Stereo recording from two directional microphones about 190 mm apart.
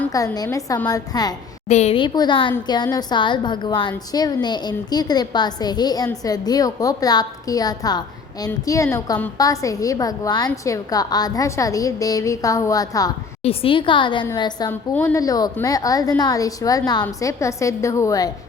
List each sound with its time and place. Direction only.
0.1 s a woman's voice: 20° left (ahead or behind)
1.6 s a woman's voice: 35° left (ahead or behind); by 13.1 s 20° left (ahead or behind)
13.4 s a woman's voice: 30° left (ahead or behind)